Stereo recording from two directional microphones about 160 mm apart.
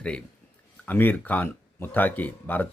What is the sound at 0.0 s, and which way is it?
A man's voice, 5° left (ahead or behind).